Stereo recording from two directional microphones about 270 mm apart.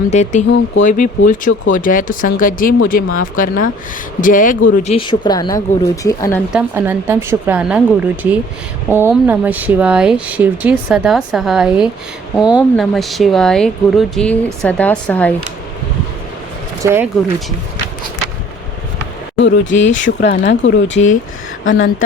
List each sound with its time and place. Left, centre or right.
0.1 s speech: left
6.5 s a woman's voice: centre
16.8 s a woman's voice: centre
19.4 s speech: left